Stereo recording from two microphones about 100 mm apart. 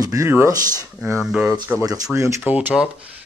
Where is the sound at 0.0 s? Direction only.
35° right (ahead or behind).